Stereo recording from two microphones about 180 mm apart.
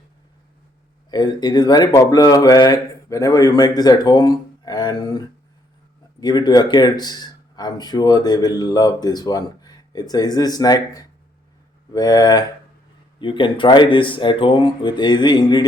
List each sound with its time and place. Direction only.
1.1 s speech: 25° left (ahead or behind)